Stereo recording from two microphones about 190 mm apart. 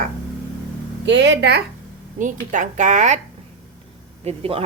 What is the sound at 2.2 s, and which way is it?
A woman's voice, 40° right (ahead or behind).